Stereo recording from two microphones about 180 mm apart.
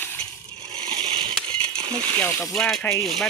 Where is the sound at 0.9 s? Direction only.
35° right (ahead or behind).